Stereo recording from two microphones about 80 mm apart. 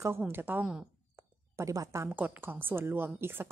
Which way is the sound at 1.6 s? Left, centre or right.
Right.